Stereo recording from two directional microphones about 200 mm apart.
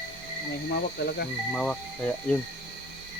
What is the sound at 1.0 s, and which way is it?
Speech, 55° left (ahead or behind).